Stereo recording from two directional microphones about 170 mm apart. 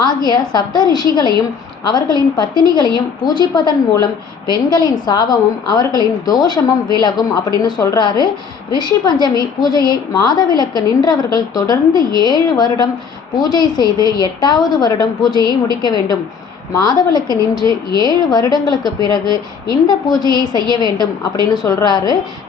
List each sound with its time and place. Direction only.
0.3 s a woman's voice: 25° left (ahead or behind)